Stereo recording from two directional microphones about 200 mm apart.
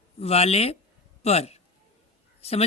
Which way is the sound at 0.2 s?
30° left (ahead or behind).